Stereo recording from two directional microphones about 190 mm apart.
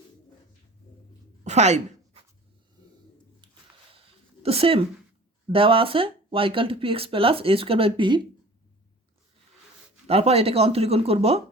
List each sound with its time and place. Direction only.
1.5 s speech: 35° right (ahead or behind)
4.4 s speech: 30° right (ahead or behind)
10.1 s speech: 30° right (ahead or behind)